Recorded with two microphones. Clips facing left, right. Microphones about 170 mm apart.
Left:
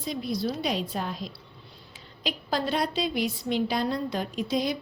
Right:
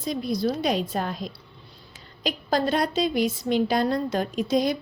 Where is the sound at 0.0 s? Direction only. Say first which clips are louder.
Right 4 dB; 45° right (ahead or behind).